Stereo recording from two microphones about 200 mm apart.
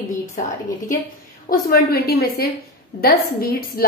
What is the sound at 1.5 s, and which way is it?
A woman's voice, 50° left (ahead or behind).